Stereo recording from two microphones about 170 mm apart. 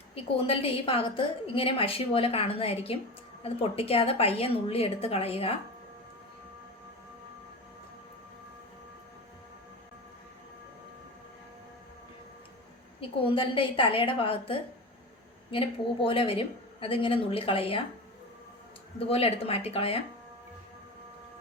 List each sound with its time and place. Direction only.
0.1 s a woman's voice: 30° left (ahead or behind)
13.0 s a woman's voice: 30° left (ahead or behind)
18.9 s a woman's voice: 35° left (ahead or behind)